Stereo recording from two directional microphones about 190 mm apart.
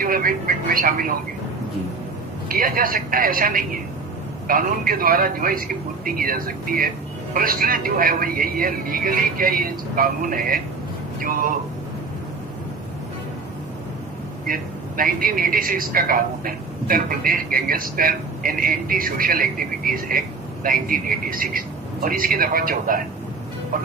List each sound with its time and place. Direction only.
0.0 s a sound: 50° right (ahead or behind)
2.5 s a man's voice: 50° right (ahead or behind)
14.4 s a man's voice: 50° right (ahead or behind)